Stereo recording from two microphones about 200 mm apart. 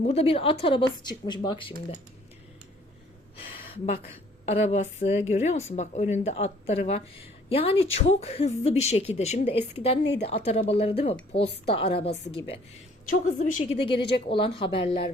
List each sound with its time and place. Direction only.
0.1 s a woman's voice: 30° left (ahead or behind)
3.5 s a sound: 30° left (ahead or behind)
4.5 s a woman's voice: 35° left (ahead or behind)
13.1 s speech: 40° left (ahead or behind)
13.8 s a woman's voice: 25° left (ahead or behind)